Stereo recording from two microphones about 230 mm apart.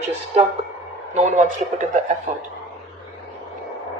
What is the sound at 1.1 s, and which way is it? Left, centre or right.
Speech, right.